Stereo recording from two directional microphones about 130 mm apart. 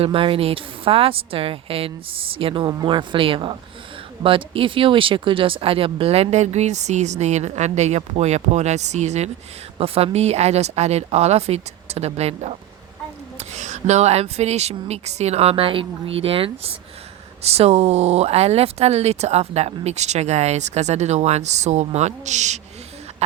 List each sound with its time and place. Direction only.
0.0 s a woman's voice: 45° right (ahead or behind); by 9.3 s 60° right (ahead or behind)
9.7 s speech: 45° right (ahead or behind); by 22.6 s 65° right (ahead or behind)